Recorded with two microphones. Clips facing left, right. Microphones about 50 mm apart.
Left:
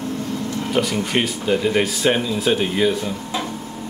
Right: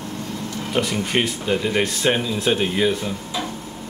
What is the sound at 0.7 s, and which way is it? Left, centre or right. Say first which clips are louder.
Speech: left 1 dB; centre.